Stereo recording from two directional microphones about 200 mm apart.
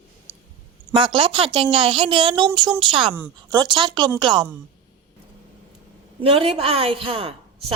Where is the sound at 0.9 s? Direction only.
25° right (ahead or behind).